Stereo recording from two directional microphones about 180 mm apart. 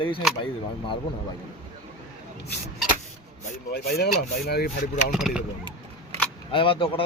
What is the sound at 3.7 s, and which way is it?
Speech, 60° left (ahead or behind).